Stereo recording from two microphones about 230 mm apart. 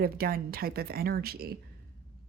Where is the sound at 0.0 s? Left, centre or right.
Right.